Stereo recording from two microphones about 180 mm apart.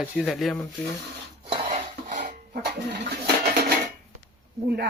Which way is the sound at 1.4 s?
35° right (ahead or behind).